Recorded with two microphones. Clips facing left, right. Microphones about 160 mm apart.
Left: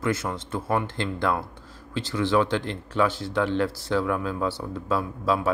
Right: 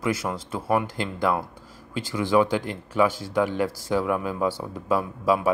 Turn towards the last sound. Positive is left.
turn(degrees=-10)  # may be behind; listen again after turning